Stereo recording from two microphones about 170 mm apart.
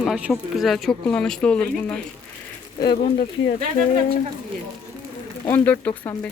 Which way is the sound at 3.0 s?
45° left (ahead or behind).